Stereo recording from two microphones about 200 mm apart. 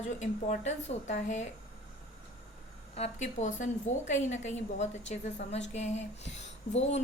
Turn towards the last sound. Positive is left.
turn(degrees=35)  # may be behind; listen again after turning